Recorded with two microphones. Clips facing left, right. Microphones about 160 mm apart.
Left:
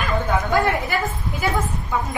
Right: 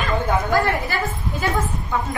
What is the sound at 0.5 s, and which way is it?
Speech, 20° left (ahead or behind).